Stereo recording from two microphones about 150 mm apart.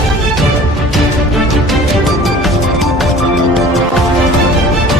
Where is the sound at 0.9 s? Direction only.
Centre (ahead or behind).